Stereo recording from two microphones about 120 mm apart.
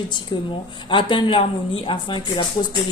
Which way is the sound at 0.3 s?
40° left (ahead or behind).